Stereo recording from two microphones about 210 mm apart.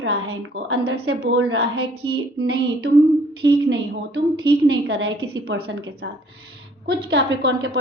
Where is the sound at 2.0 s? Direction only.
20° right (ahead or behind).